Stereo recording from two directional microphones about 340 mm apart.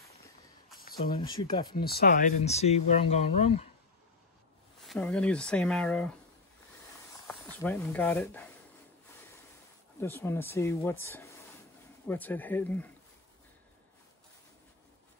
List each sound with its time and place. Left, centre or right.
0.7 s a sound: left
1.3 s speech: centre
1.8 s speech: left
4.8 s speech: centre
7.5 s speech: centre
9.9 s speech: centre